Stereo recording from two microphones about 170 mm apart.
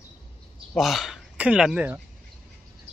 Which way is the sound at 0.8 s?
Centre (ahead or behind).